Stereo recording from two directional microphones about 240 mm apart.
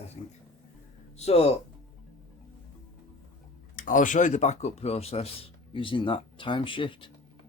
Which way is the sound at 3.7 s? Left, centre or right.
Left.